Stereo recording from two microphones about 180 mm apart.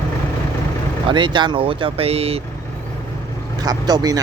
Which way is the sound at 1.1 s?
25° right (ahead or behind).